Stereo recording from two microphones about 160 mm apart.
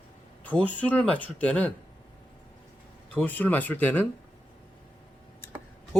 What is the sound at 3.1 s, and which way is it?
Speech, 10° left (ahead or behind).